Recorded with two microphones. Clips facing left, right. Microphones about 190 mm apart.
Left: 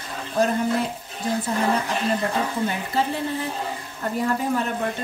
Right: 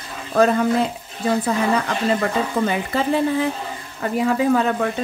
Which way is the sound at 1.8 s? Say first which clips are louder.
Right 3 dB; 90° right.